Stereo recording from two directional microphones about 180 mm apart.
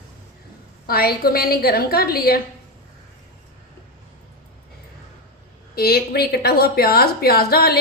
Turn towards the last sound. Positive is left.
turn(degrees=60)  # may be behind; listen again after turning